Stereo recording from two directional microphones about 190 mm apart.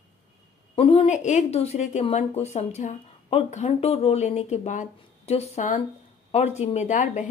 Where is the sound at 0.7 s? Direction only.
30° left (ahead or behind).